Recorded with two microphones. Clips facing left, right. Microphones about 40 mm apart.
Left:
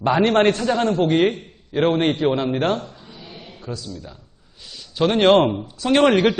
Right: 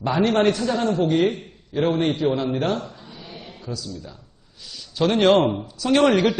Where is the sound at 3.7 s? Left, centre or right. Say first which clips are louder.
Left 1 dB; left.